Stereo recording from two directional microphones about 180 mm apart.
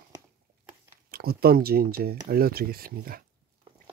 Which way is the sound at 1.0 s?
60° right (ahead or behind).